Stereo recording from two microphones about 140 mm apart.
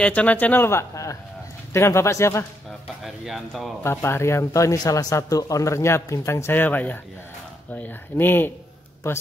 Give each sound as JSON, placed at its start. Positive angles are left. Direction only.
{"t": 0.0, "sound": "a man's voice", "side_deg": 10}
{"t": 3.0, "sound": "speech", "side_deg": 0}
{"t": 3.8, "sound": "a man's voice", "side_deg": 20}